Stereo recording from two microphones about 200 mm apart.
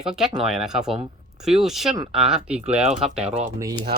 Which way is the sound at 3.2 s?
30° right (ahead or behind).